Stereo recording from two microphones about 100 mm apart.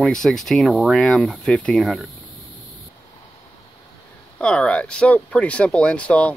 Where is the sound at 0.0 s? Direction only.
5° left (ahead or behind).